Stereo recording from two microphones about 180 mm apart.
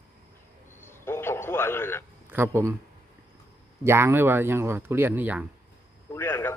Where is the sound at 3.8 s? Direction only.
15° right (ahead or behind).